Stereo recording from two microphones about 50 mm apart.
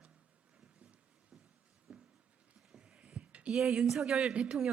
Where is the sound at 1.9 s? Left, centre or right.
Centre.